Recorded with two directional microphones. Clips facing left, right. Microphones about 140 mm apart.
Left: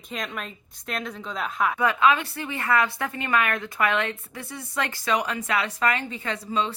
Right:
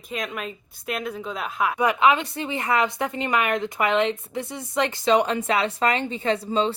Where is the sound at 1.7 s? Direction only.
15° right (ahead or behind).